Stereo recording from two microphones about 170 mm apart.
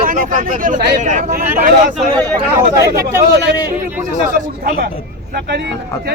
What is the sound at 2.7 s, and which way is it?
Speech, 20° right (ahead or behind).